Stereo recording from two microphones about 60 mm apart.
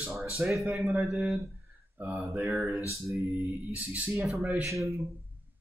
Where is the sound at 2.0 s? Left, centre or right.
Right.